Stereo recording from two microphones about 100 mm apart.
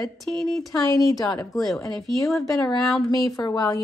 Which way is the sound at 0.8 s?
35° left (ahead or behind).